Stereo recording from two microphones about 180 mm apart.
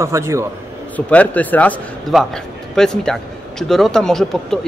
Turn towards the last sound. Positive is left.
turn(degrees=0)  # may be behind; listen again after turning